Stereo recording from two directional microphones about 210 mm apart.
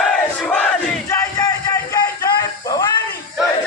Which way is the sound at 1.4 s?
15° left (ahead or behind).